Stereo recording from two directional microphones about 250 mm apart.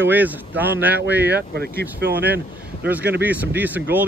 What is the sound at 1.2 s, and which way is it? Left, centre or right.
Speech, right.